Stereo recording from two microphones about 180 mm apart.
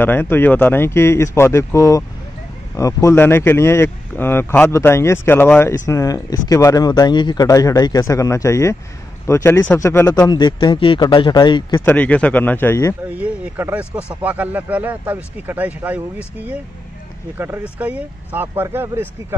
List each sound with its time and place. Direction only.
0.0 s speech: 10° left (ahead or behind)
11.8 s speech: 10° left (ahead or behind)
13.1 s speech: 10° right (ahead or behind)
17.4 s speech: 10° right (ahead or behind)